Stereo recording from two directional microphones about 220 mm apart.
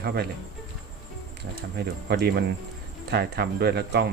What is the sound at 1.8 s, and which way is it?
Speech, 45° right (ahead or behind).